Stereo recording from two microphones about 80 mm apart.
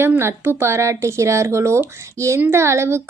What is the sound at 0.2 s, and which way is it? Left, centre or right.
A woman's voice, right.